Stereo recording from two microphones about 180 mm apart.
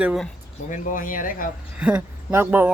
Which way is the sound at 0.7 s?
45° left (ahead or behind).